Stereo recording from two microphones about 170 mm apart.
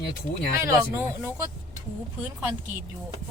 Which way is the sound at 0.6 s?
15° right (ahead or behind).